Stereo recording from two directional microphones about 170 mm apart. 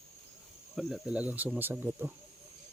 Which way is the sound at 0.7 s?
Centre (ahead or behind).